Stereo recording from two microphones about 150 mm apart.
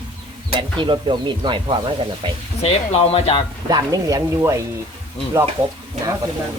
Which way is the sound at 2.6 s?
45° left (ahead or behind).